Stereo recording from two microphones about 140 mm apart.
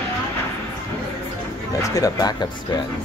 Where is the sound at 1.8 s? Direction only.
25° left (ahead or behind).